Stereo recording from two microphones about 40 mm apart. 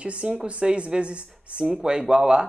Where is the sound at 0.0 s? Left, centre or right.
Right.